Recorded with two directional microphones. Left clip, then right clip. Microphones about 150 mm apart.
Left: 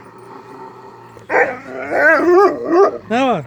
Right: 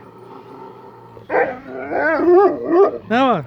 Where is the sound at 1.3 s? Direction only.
25° left (ahead or behind).